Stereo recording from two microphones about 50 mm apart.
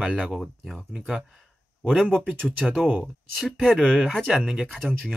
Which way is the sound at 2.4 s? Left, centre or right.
Centre.